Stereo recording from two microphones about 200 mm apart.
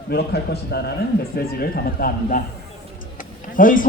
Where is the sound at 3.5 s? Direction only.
45° left (ahead or behind).